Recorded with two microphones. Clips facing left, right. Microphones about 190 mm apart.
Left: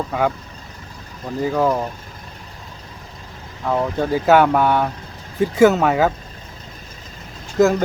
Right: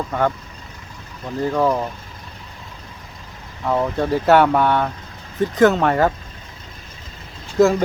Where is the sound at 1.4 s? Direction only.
5° left (ahead or behind).